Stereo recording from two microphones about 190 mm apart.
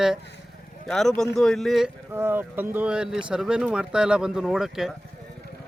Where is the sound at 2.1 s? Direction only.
10° right (ahead or behind).